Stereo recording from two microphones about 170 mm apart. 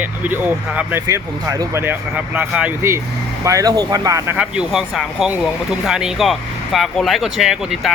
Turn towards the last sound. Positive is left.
turn(degrees=-5)  # may be behind; listen again after turning